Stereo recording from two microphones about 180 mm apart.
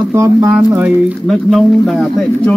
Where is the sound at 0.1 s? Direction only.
15° right (ahead or behind).